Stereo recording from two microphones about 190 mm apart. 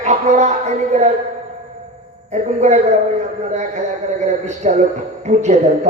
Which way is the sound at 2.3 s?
40° right (ahead or behind).